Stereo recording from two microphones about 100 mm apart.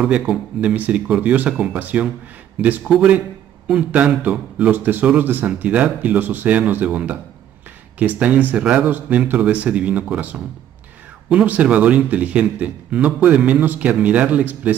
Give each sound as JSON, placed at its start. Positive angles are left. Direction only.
{"t": 0.0, "sound": "a man's voice", "side_deg": -10}